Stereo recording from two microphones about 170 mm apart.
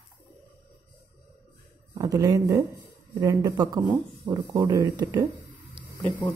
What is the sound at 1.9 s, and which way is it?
Speech, 20° right (ahead or behind).